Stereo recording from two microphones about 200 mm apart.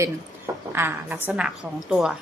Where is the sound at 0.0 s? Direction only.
10° right (ahead or behind).